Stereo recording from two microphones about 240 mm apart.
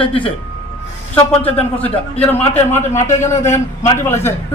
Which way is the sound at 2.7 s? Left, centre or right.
Centre.